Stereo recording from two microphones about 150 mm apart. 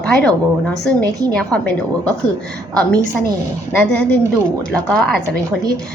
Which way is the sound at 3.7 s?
10° left (ahead or behind).